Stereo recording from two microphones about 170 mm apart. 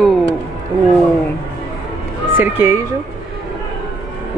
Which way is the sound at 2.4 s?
15° right (ahead or behind).